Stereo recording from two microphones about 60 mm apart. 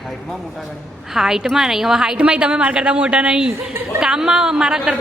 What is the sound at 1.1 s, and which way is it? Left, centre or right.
A woman's voice, centre.